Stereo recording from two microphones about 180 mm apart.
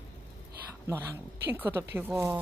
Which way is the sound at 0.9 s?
15° right (ahead or behind).